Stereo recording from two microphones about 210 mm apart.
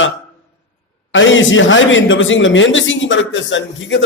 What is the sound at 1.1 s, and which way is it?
A man's voice, 65° left (ahead or behind).